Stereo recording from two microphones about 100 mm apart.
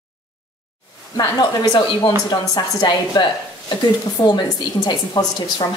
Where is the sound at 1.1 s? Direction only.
40° left (ahead or behind).